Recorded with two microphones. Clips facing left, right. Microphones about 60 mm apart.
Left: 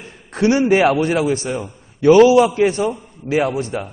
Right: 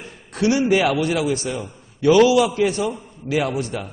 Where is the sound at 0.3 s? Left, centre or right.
Left.